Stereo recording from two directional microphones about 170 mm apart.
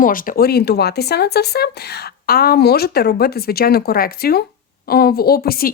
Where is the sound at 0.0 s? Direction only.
55° left (ahead or behind).